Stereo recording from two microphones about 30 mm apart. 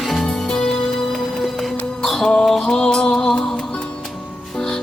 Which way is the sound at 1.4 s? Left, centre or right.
Centre.